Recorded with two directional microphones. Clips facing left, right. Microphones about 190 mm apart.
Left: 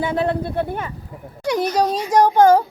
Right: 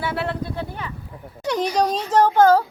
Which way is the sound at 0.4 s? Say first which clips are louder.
Left 6 dB; 55° left (ahead or behind).